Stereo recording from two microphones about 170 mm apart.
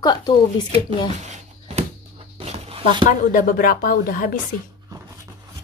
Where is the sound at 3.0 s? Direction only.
55° left (ahead or behind).